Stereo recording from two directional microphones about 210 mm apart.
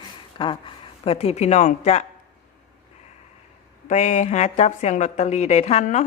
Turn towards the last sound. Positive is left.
turn(degrees=30)  # may be behind; listen again after turning